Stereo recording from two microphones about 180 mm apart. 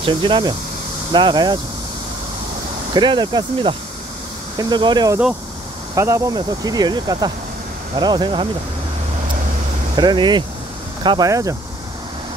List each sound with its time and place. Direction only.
0.0 s speech: 25° right (ahead or behind)
2.9 s speech: 25° right (ahead or behind)
9.9 s speech: 25° right (ahead or behind)